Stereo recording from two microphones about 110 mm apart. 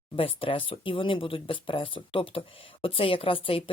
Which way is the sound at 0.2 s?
55° left (ahead or behind).